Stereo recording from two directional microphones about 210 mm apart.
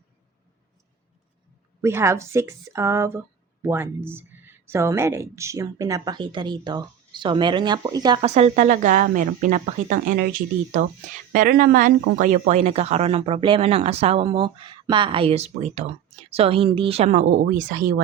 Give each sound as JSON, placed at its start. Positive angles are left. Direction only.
{"t": 1.8, "sound": "speech", "side_deg": -10}
{"t": 8.3, "sound": "speech", "side_deg": -30}